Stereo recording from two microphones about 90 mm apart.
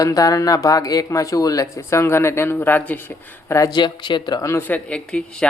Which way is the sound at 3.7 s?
60° left (ahead or behind).